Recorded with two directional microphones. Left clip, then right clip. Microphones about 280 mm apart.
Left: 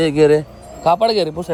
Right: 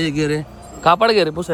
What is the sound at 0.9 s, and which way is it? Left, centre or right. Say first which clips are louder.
Speech: right 1 dB; right.